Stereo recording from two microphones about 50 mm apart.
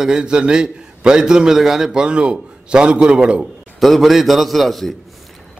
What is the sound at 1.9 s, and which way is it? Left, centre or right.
A man's voice, centre.